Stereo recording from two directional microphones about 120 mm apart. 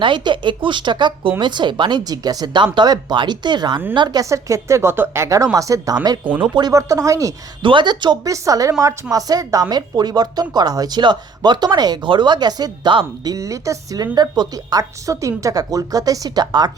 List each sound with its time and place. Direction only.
0.0 s a woman's voice: 40° right (ahead or behind)
6.2 s speech: 15° right (ahead or behind)
6.5 s a woman's voice: 35° right (ahead or behind)
7.6 s a woman's voice: 45° right (ahead or behind)
13.3 s a woman's voice: 25° right (ahead or behind)